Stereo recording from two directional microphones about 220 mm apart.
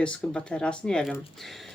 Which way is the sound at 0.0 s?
5° left (ahead or behind).